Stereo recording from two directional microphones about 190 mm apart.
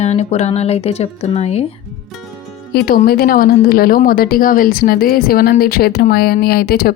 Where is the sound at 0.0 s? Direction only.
35° left (ahead or behind).